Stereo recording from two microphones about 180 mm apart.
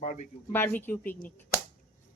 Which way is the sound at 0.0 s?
40° left (ahead or behind).